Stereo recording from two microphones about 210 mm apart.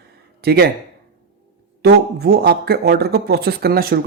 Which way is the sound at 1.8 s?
50° right (ahead or behind).